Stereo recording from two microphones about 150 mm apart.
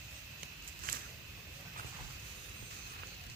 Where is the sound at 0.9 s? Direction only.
70° right (ahead or behind).